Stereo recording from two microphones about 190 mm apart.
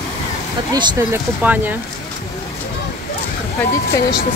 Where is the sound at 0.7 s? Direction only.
20° right (ahead or behind).